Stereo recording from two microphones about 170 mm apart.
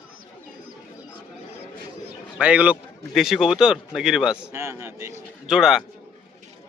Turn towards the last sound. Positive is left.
turn(degrees=0)  # may be behind; listen again after turning